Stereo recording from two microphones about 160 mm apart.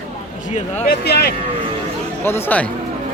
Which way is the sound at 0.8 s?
85° left.